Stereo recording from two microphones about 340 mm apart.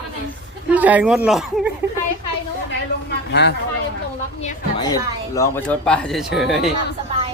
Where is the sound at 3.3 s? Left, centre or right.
Left.